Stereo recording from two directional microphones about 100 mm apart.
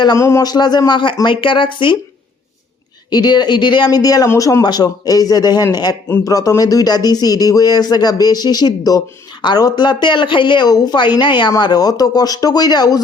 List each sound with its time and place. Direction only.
0.2 s speech: 30° left (ahead or behind)
0.4 s speech: 45° left (ahead or behind)
3.1 s speech: 45° left (ahead or behind)
3.8 s speech: 40° left (ahead or behind)